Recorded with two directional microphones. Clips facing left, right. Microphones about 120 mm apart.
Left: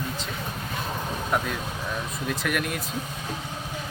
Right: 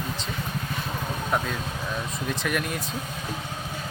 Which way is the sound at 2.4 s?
5° left (ahead or behind).